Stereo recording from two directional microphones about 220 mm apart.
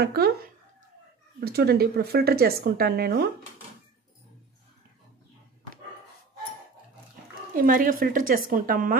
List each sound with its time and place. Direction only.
0.0 s speech: 45° right (ahead or behind)
1.4 s speech: 45° right (ahead or behind)
7.5 s speech: 40° right (ahead or behind)